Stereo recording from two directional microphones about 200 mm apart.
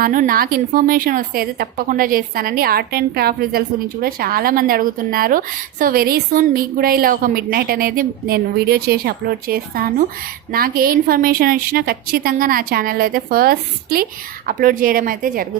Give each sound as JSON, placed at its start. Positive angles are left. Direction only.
{"t": 0.0, "sound": "a woman's voice", "side_deg": -45}